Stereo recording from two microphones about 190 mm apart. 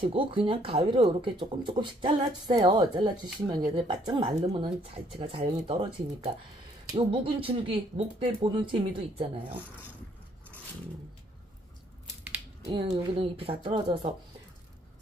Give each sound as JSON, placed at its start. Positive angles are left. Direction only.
{"t": 0.0, "sound": "speech", "side_deg": -30}
{"t": 12.6, "sound": "speech", "side_deg": -25}